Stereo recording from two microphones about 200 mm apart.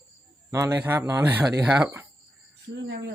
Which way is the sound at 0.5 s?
15° right (ahead or behind).